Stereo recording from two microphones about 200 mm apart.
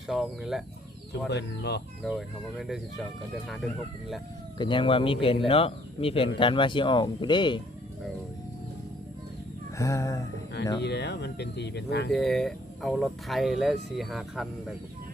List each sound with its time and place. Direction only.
0.1 s speech: centre (ahead or behind)
1.3 s speech: 55° left (ahead or behind)
2.0 s speech: centre (ahead or behind)
4.5 s speech: 25° left (ahead or behind)
9.7 s chicken: 15° left (ahead or behind)
10.8 s speech: 55° left (ahead or behind)
12.1 s speech: centre (ahead or behind)